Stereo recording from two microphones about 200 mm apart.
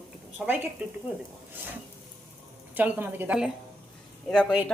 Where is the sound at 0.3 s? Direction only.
10° right (ahead or behind).